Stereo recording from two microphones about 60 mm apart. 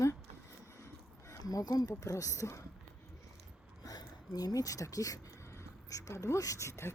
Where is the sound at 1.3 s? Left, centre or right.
Left.